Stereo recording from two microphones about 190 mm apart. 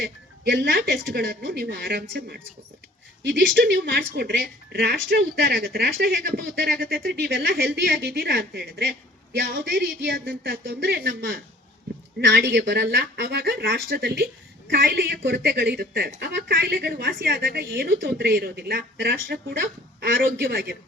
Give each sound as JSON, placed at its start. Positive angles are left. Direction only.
{"t": 0.0, "sound": "a woman's voice", "side_deg": -65}
{"t": 3.5, "sound": "a woman's voice", "side_deg": -60}